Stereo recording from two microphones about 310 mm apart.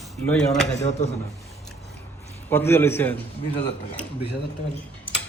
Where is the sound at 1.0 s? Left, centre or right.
Left.